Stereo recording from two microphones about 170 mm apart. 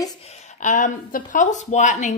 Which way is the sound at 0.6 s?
50° left (ahead or behind).